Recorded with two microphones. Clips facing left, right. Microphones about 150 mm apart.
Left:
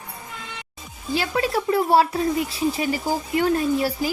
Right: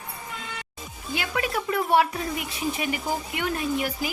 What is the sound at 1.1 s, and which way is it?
Speech, 30° left (ahead or behind).